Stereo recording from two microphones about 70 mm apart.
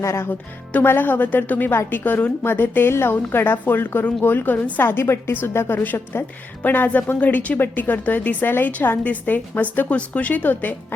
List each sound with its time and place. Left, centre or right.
0.0 s speech: left
0.3 s a woman's voice: left